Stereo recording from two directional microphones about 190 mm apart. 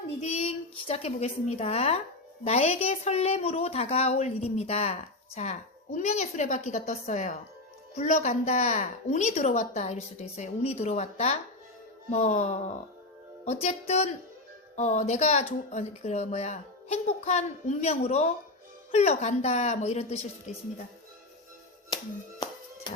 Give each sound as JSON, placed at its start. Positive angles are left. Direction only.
{"t": 0.2, "sound": "a woman's voice", "side_deg": 35}